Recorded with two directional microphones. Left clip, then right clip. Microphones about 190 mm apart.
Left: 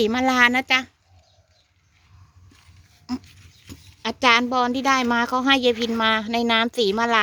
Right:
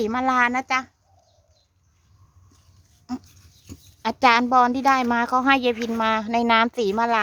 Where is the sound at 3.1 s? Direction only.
10° left (ahead or behind).